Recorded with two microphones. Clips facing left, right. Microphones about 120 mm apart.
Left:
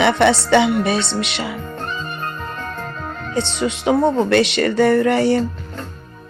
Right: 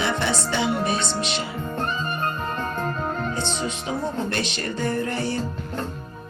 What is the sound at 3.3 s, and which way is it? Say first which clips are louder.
Speech: left 6 dB; 70° left (ahead or behind).